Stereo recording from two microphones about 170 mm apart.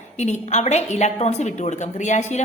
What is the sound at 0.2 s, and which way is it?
A woman's voice, 45° left (ahead or behind).